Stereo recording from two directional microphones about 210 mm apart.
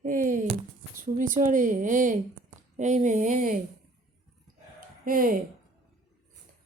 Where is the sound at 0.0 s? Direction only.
40° right (ahead or behind).